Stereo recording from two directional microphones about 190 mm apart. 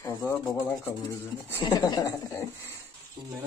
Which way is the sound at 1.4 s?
15° left (ahead or behind).